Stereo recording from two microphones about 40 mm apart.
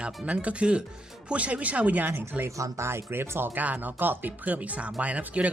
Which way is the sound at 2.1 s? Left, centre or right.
Right.